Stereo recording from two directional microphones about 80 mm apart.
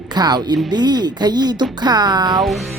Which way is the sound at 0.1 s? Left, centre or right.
Right.